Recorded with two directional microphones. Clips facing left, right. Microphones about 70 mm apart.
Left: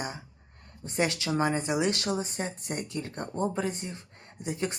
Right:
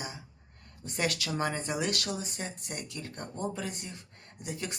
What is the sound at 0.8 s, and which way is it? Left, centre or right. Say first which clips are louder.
Speech: left 4 dB; left.